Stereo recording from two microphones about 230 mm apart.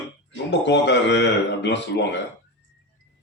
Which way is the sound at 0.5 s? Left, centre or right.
Left.